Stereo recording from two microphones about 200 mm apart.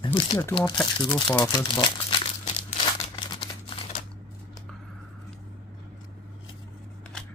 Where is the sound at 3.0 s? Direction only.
25° left (ahead or behind).